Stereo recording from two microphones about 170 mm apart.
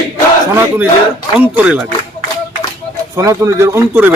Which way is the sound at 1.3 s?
10° right (ahead or behind).